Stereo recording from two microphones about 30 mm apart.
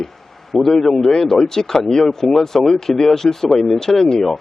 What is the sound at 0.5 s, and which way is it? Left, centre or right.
A man's voice, centre.